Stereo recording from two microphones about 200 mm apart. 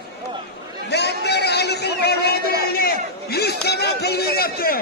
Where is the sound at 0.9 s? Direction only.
55° left (ahead or behind).